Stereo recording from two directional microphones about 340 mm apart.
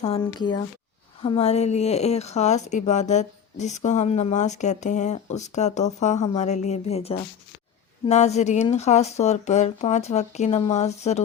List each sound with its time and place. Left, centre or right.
0.0 s speech: centre